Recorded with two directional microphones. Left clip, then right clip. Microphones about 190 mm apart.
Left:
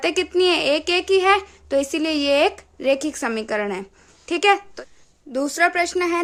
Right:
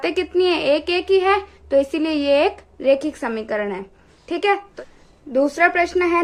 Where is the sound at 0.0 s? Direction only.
25° left (ahead or behind).